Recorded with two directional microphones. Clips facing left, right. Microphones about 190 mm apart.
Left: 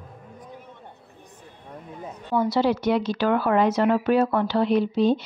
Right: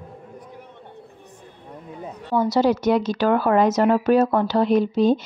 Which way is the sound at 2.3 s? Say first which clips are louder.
Right 3 dB; 40° right (ahead or behind).